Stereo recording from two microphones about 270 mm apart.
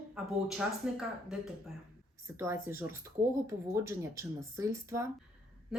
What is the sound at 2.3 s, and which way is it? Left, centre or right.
Speech, centre.